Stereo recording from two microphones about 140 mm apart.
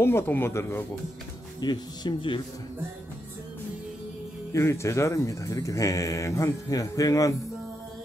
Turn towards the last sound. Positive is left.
turn(degrees=25)  # may be behind; listen again after turning